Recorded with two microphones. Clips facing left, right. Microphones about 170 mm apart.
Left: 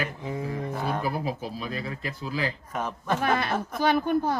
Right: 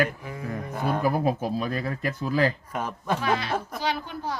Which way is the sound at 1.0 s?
50° right (ahead or behind).